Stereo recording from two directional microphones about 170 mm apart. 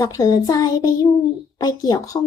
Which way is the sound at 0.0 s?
20° left (ahead or behind).